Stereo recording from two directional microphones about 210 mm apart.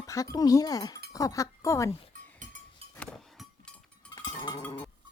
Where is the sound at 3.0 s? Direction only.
5° left (ahead or behind).